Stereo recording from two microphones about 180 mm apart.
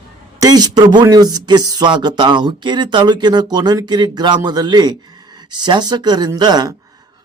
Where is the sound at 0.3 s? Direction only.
20° right (ahead or behind).